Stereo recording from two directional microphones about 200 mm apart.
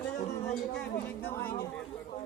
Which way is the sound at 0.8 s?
10° left (ahead or behind).